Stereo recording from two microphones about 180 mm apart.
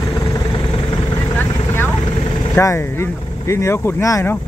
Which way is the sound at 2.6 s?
15° left (ahead or behind).